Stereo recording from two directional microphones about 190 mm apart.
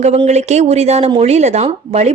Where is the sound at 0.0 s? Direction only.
35° right (ahead or behind).